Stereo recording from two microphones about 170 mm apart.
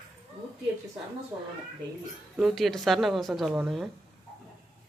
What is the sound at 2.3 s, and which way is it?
Speech, centre (ahead or behind).